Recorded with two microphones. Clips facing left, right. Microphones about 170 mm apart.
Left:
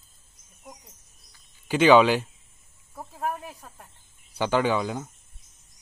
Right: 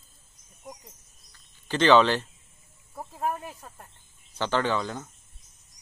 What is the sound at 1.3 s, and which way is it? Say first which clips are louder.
Cricket: left 4 dB; 10° left (ahead or behind).